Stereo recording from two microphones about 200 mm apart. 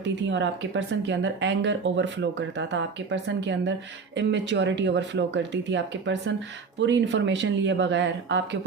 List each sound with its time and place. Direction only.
0.0 s speech: 65° right (ahead or behind)